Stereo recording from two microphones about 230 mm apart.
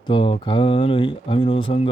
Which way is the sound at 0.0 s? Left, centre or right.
Left.